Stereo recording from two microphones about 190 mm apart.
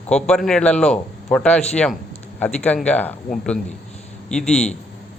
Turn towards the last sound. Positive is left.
turn(degrees=5)  # may be behind; listen again after turning